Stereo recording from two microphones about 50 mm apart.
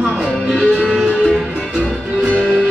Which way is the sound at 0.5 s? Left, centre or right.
Left.